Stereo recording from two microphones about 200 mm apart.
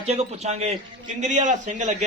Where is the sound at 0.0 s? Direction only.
35° right (ahead or behind).